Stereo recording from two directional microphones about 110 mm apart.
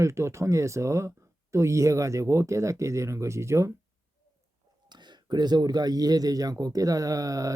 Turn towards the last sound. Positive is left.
turn(degrees=-30)  # may be behind; listen again after turning